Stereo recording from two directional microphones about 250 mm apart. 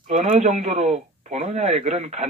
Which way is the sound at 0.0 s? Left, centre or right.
Right.